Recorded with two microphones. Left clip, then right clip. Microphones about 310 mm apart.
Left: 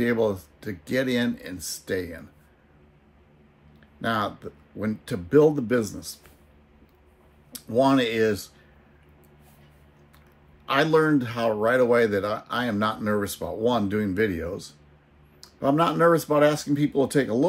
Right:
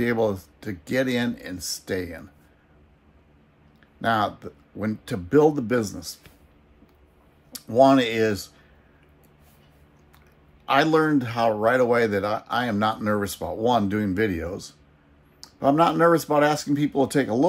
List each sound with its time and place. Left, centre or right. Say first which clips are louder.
0.0 s speech: even; centre
4.0 s speech: right 4 dB; centre
7.5 s speech: right 4 dB; centre
10.6 s speech: right 1 dB; centre